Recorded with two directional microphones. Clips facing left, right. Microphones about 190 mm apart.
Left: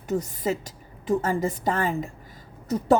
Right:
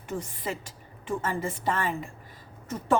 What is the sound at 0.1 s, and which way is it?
A woman's voice, 40° left (ahead or behind).